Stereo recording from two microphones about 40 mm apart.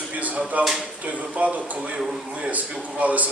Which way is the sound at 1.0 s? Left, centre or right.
Right.